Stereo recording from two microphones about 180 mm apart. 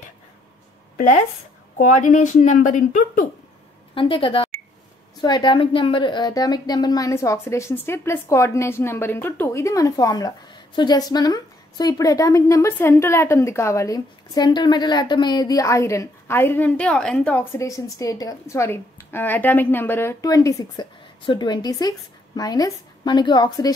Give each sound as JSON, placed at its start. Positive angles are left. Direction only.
{"t": 0.9, "sound": "speech", "side_deg": 40}
{"t": 3.9, "sound": "a woman's voice", "side_deg": 30}